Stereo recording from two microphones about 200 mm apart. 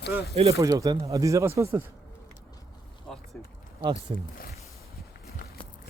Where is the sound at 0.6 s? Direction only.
15° right (ahead or behind).